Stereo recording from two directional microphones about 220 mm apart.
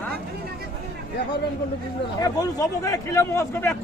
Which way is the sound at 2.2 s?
15° left (ahead or behind).